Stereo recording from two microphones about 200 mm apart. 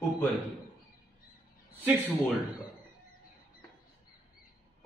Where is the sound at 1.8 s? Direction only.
10° right (ahead or behind).